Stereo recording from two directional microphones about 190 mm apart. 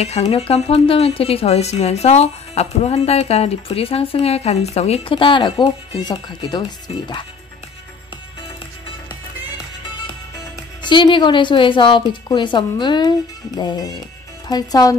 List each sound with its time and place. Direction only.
0.0 s speech: 35° left (ahead or behind)
10.8 s a woman's voice: 25° left (ahead or behind)